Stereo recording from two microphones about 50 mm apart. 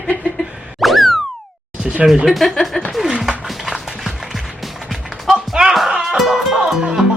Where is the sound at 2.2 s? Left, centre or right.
Centre.